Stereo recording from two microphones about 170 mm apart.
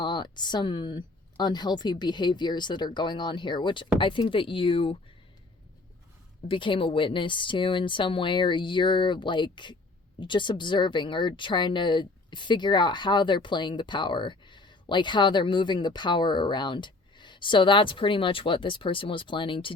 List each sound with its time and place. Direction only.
0.0 s speech: 25° left (ahead or behind)
6.5 s speech: 30° left (ahead or behind)